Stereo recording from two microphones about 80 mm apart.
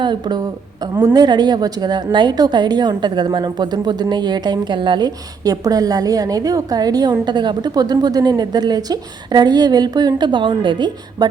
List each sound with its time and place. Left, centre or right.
0.0 s a woman's voice: right